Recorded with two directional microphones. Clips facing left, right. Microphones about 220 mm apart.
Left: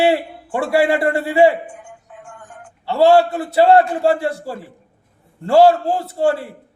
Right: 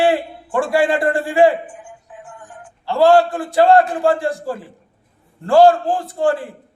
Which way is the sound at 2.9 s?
5° left (ahead or behind).